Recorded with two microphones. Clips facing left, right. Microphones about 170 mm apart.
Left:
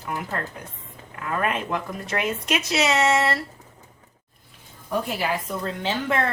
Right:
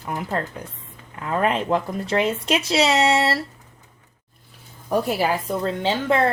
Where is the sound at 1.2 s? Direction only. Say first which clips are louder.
Right 4 dB; 30° right (ahead or behind).